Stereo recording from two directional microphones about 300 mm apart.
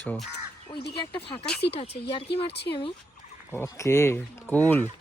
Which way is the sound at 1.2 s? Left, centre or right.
Centre.